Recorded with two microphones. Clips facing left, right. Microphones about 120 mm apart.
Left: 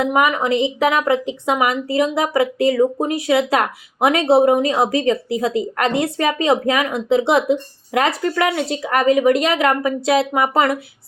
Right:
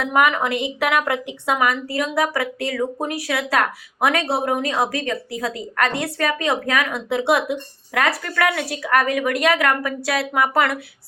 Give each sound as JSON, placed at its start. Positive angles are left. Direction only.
{"t": 0.0, "sound": "a woman's voice", "side_deg": 15}